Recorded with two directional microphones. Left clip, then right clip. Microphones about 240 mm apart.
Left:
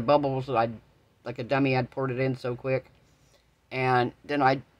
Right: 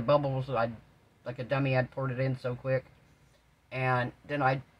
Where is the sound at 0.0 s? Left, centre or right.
Left.